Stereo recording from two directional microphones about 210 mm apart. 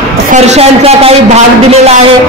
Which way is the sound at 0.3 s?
30° right (ahead or behind).